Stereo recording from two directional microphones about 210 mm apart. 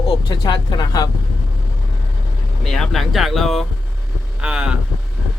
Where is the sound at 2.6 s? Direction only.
Centre (ahead or behind).